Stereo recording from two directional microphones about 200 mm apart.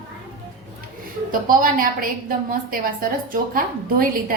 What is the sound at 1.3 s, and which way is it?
A woman's voice, 45° right (ahead or behind).